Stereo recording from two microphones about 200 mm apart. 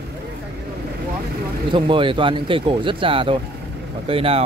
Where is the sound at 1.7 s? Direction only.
25° right (ahead or behind).